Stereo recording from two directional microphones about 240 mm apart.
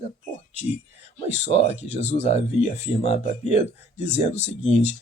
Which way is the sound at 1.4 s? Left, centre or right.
Left.